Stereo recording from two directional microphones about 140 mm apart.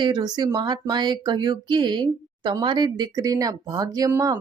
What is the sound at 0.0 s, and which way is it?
Speech, 30° right (ahead or behind).